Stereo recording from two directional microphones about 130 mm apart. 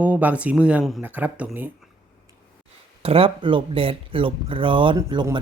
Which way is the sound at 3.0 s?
45° right (ahead or behind).